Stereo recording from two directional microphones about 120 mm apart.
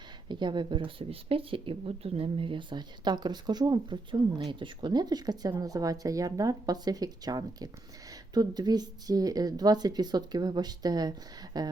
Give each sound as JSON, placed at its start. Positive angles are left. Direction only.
{"t": 0.3, "sound": "speech", "side_deg": -40}